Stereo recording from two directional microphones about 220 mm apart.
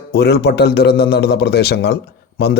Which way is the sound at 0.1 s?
50° left (ahead or behind).